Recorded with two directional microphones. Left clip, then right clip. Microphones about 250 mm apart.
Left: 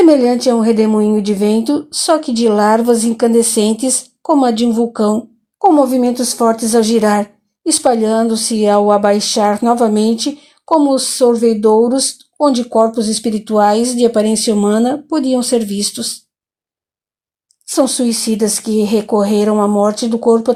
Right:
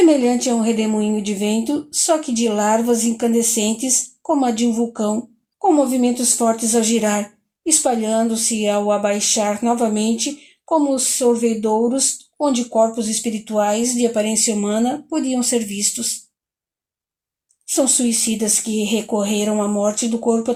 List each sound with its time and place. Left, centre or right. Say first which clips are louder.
0.0 s a woman's voice: left 5 dB; left
12.9 s speech: left 7 dB; centre
13.2 s a woman's voice: left 7 dB; left
17.7 s a woman's voice: left 4 dB; left